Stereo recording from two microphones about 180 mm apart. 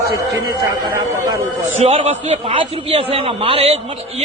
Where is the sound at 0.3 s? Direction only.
25° right (ahead or behind).